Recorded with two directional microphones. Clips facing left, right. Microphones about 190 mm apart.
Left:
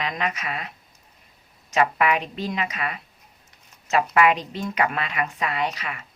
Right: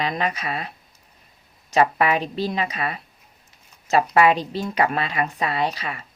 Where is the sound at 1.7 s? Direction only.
35° right (ahead or behind).